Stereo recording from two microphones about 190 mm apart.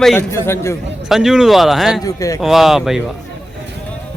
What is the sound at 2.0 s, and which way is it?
Speech, 15° left (ahead or behind).